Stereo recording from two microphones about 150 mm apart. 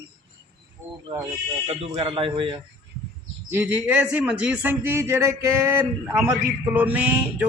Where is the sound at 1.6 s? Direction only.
40° right (ahead or behind).